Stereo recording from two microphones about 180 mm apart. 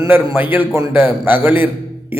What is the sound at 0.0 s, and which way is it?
A man's voice, 15° right (ahead or behind).